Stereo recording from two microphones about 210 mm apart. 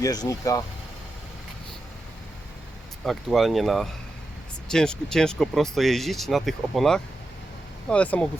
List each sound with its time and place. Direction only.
0.0 s speech: 15° left (ahead or behind)
3.0 s speech: centre (ahead or behind)